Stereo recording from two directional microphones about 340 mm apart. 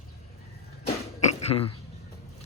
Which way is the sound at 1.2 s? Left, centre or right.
Centre.